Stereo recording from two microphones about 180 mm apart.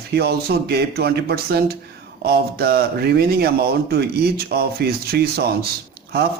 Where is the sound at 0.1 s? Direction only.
65° right (ahead or behind).